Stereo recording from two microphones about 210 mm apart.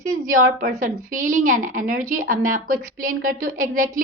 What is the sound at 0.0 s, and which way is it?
A woman's voice, 40° right (ahead or behind).